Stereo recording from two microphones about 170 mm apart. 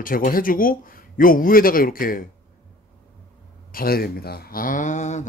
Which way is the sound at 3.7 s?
60° left (ahead or behind).